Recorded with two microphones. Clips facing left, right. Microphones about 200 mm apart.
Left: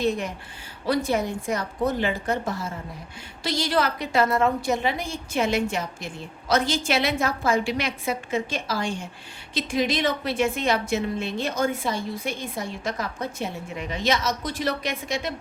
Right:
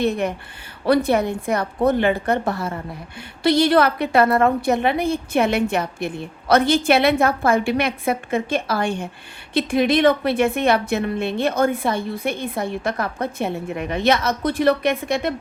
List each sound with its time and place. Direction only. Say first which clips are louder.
0.0 s a woman's voice: right 4 dB; 60° right (ahead or behind)